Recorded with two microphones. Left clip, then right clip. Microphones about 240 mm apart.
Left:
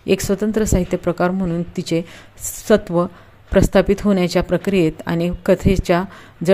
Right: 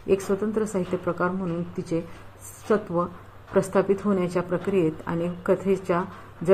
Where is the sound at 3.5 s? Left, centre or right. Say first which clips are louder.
Left 7 dB; left.